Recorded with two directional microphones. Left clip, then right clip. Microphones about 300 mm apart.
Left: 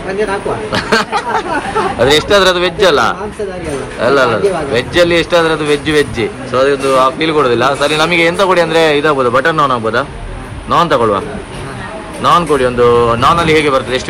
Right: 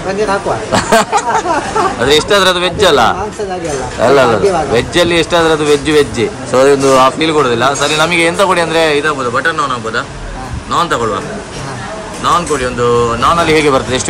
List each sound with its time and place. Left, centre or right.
0.7 s a man's voice: centre
4.0 s a man's voice: centre
13.5 s a man's voice: centre